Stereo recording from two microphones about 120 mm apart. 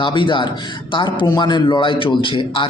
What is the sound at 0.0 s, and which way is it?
A man's voice, 40° left (ahead or behind).